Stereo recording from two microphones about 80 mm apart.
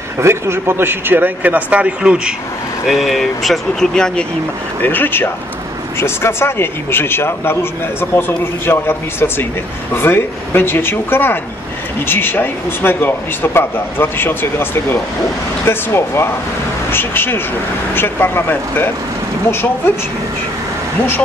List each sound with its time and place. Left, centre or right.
0.2 s a man's voice: right; by 2.3 s centre
2.9 s speech: centre
4.8 s speech: left